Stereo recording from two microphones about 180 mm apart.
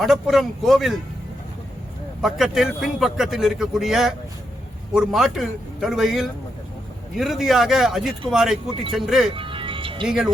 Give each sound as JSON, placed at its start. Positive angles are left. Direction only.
{"t": 0.0, "sound": "a man's voice", "side_deg": 0}
{"t": 2.2, "sound": "a man's voice", "side_deg": 0}
{"t": 9.3, "sound": "music", "side_deg": -30}
{"t": 10.1, "sound": "a man's voice", "side_deg": -5}